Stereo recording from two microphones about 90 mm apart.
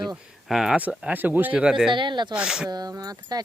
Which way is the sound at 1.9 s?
60° right (ahead or behind).